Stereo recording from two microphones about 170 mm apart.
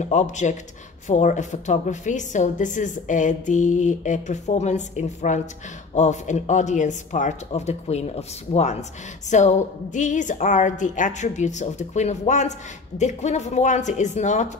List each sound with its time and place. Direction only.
0.0 s a woman's voice: 45° left (ahead or behind)